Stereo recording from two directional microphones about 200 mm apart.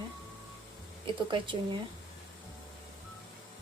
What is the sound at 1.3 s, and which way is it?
Speech, 25° right (ahead or behind).